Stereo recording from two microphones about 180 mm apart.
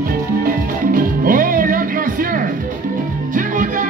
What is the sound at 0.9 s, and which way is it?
Music, 50° right (ahead or behind).